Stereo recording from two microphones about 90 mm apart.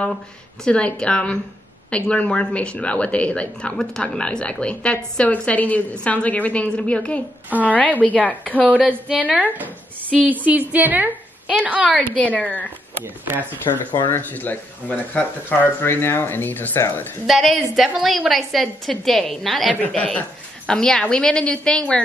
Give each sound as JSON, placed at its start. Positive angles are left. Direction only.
{"t": 0.7, "sound": "speech", "side_deg": 10}
{"t": 9.3, "sound": "a woman's voice", "side_deg": -20}
{"t": 12.2, "sound": "speech", "side_deg": 15}
{"t": 13.7, "sound": "speech", "side_deg": 65}
{"t": 14.0, "sound": "speech", "side_deg": 20}
{"t": 17.3, "sound": "a woman's voice", "side_deg": 0}